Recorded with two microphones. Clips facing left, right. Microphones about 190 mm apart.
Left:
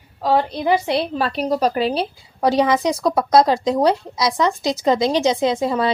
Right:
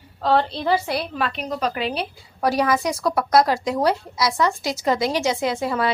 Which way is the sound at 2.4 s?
20° left (ahead or behind).